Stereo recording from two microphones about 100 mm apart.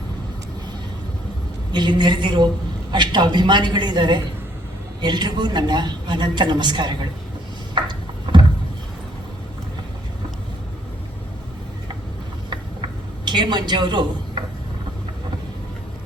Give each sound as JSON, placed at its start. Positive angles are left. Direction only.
{"t": 1.7, "sound": "a woman's voice", "side_deg": -50}
{"t": 7.8, "sound": "a sound", "side_deg": -50}
{"t": 13.2, "sound": "a man's voice", "side_deg": -50}